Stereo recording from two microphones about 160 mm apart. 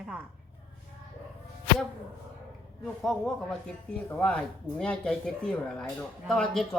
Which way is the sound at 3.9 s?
5° left (ahead or behind).